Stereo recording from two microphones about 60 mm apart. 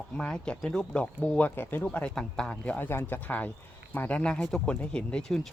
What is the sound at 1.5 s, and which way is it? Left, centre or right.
Speech, left.